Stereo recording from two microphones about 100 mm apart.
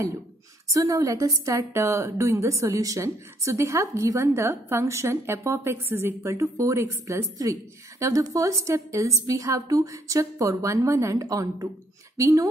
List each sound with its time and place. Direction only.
0.7 s a woman's voice: 35° right (ahead or behind)